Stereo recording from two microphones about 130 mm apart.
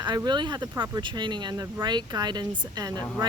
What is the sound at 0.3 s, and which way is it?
Speech, 35° right (ahead or behind).